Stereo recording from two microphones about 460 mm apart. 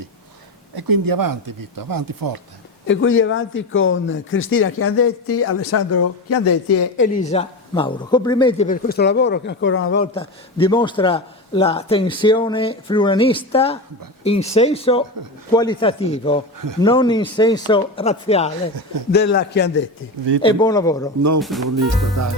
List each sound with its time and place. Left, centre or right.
0.8 s speech: right
2.8 s speech: left
10.2 s speech: centre
20.4 s speech: centre
21.2 s speech: right
21.4 s speech: centre